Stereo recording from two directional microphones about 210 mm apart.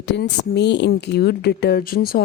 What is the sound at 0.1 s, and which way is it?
Speech, 55° left (ahead or behind).